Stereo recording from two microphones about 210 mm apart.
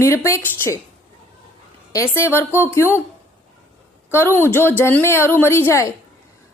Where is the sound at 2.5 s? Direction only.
10° left (ahead or behind).